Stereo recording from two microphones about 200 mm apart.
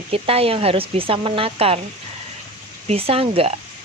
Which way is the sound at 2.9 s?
30° right (ahead or behind).